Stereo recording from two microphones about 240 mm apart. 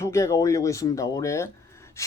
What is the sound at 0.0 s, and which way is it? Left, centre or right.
Speech, centre.